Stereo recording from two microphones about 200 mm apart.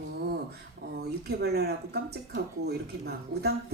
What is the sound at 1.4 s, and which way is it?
Speech, 55° right (ahead or behind).